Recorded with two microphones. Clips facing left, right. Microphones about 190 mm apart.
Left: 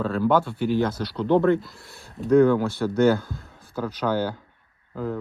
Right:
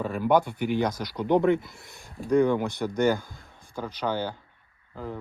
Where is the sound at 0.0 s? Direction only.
15° right (ahead or behind).